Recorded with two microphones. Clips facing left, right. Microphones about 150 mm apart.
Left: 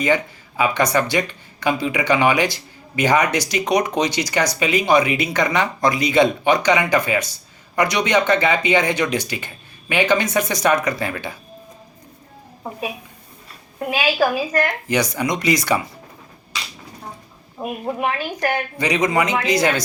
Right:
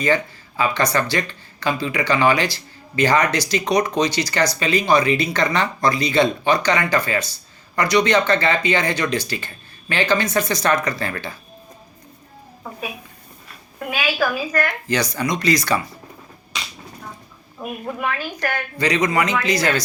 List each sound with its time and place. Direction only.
0.0 s speech: 15° left (ahead or behind)
13.7 s a woman's voice: 30° left (ahead or behind)
17.6 s a woman's voice: 30° left (ahead or behind)